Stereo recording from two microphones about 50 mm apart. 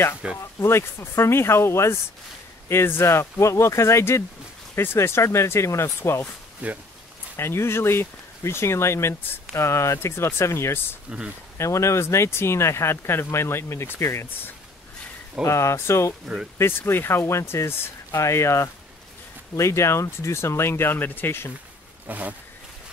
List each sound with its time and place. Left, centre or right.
0.4 s speech: left
6.6 s speech: right
7.3 s speech: left
11.5 s speech: left
15.4 s speech: left
22.0 s speech: right